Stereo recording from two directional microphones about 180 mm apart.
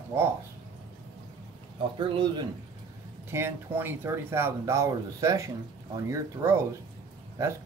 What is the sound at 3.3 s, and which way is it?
Speech, 15° right (ahead or behind).